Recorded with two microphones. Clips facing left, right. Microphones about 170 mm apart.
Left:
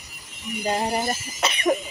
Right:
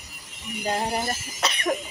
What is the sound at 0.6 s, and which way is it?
Speech, centre (ahead or behind).